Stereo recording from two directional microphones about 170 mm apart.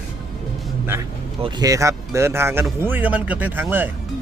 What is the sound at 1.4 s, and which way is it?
Speech, 20° right (ahead or behind).